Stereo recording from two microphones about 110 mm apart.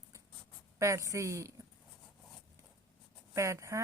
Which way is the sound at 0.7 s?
25° right (ahead or behind).